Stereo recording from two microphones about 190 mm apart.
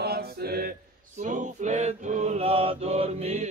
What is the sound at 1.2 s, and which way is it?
Mantra, 40° right (ahead or behind).